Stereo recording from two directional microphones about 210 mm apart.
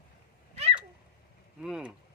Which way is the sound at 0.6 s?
30° right (ahead or behind).